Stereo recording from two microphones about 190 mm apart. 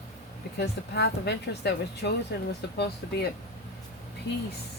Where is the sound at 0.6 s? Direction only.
60° left (ahead or behind).